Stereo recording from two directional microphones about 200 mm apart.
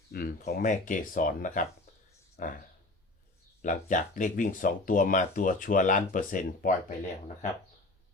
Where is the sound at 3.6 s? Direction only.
40° left (ahead or behind).